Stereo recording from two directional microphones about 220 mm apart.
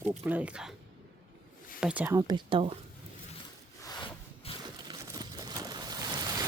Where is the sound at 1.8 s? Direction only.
5° right (ahead or behind); by 2.8 s 25° right (ahead or behind).